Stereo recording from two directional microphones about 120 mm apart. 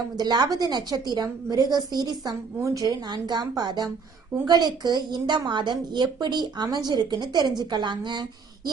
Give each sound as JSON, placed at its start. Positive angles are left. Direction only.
{"t": 0.2, "sound": "a woman's voice", "side_deg": -35}